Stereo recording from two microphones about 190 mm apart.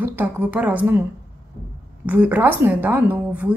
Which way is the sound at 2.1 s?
10° right (ahead or behind).